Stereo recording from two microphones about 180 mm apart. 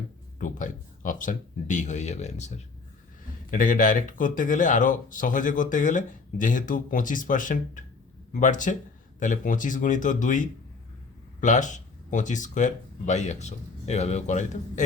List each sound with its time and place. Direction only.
0.3 s speech: 45° left (ahead or behind)
3.5 s speech: 45° left (ahead or behind)